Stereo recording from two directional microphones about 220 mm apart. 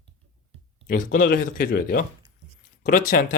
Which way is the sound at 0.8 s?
40° left (ahead or behind).